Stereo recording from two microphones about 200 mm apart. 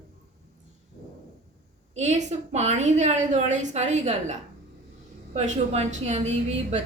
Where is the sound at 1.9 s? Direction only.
35° right (ahead or behind).